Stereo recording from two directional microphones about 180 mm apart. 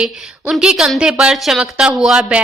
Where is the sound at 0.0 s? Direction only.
5° right (ahead or behind).